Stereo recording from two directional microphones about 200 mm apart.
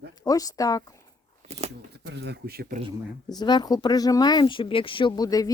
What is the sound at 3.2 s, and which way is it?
Speech, 20° left (ahead or behind).